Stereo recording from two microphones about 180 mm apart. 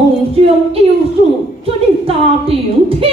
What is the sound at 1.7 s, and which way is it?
A woman's voice, 30° right (ahead or behind).